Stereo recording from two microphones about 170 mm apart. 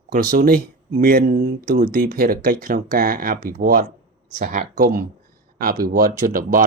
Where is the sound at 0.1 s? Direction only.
55° right (ahead or behind).